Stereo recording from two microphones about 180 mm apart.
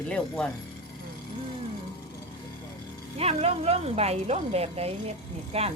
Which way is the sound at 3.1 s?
35° right (ahead or behind).